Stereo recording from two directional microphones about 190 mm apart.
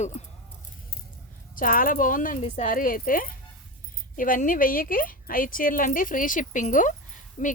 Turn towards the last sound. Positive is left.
turn(degrees=40)  # may be behind; listen again after turning